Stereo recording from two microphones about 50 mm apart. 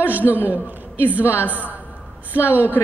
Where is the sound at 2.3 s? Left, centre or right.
Right.